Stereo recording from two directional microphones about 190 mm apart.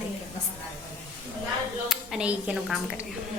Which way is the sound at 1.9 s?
5° right (ahead or behind).